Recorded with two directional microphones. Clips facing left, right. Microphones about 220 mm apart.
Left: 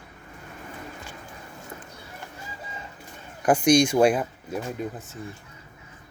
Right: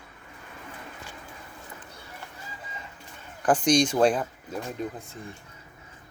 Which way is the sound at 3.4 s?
10° left (ahead or behind).